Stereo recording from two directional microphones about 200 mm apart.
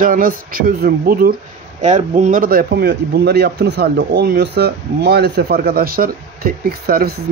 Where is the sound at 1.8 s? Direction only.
35° right (ahead or behind).